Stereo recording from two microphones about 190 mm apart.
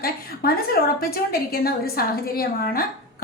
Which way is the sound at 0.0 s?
50° left (ahead or behind).